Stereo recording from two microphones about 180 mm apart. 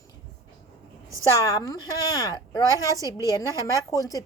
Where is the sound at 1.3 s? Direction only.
20° left (ahead or behind).